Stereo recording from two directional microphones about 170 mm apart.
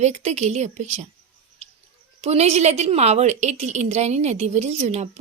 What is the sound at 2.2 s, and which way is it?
A woman's voice, 40° right (ahead or behind).